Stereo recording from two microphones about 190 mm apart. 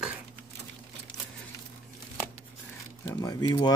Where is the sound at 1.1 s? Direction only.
20° left (ahead or behind).